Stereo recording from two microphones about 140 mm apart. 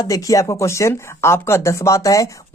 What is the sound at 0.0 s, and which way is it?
Speech, 25° left (ahead or behind).